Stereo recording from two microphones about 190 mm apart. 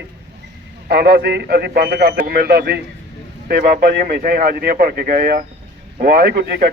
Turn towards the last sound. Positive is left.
turn(degrees=-50)  # may be behind; listen again after turning